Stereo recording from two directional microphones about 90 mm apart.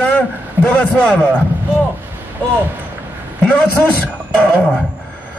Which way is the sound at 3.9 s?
10° left (ahead or behind).